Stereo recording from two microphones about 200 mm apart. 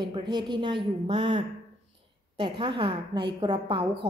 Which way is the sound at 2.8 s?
25° right (ahead or behind).